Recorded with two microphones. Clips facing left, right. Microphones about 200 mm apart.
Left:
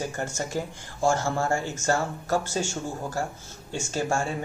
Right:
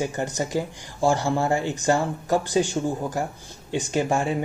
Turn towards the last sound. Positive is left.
turn(degrees=-15)  # may be behind; listen again after turning